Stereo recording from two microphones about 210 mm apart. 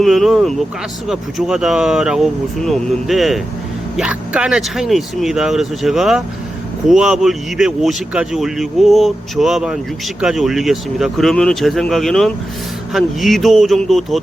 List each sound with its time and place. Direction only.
0.0 s speech: centre (ahead or behind)